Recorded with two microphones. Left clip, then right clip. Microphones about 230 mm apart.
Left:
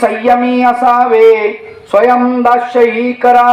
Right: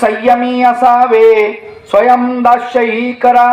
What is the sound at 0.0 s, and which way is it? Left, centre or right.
A man's voice, right.